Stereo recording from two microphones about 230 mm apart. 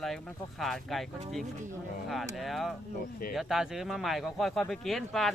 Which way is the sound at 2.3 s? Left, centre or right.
Centre.